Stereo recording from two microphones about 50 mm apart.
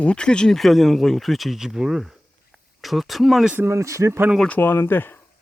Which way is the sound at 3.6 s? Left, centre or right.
Right.